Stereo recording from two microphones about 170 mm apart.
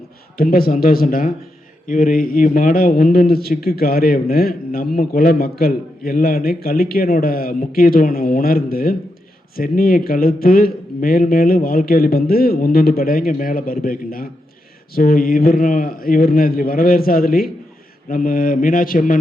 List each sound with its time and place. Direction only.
0.3 s a man's voice: 60° left (ahead or behind)
18.1 s mantra: 55° left (ahead or behind)